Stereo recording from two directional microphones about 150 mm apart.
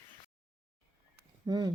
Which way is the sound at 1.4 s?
25° right (ahead or behind).